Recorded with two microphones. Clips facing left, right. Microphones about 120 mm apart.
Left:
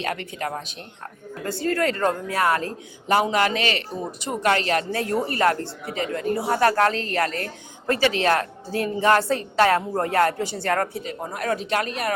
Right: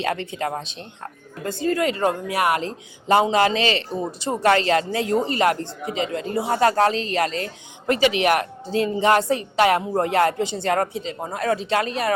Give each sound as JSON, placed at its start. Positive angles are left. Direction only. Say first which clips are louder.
{"t": 0.0, "sound": "speech", "louder": "right 3 dB", "side_deg": -30}